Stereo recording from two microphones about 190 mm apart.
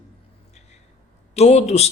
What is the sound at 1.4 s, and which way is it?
Speech, 35° left (ahead or behind).